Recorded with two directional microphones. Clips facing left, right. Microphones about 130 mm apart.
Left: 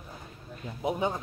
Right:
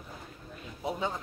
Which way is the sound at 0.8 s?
20° left (ahead or behind).